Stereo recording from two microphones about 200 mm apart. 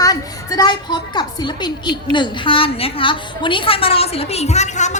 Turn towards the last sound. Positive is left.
turn(degrees=35)  # may be behind; listen again after turning